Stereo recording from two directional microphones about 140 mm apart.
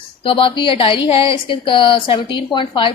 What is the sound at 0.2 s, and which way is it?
A woman's voice, 40° left (ahead or behind).